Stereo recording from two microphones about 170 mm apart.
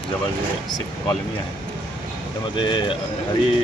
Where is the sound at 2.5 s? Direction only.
30° left (ahead or behind).